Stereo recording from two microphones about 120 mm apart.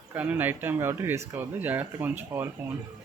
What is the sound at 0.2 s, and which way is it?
Speech, 15° right (ahead or behind).